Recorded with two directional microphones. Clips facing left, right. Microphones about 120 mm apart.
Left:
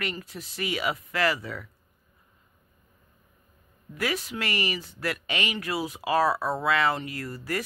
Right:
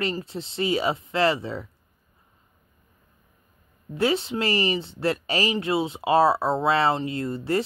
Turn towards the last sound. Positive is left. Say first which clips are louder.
# right 7 dB
turn(degrees=-25)  # may be behind; listen again after turning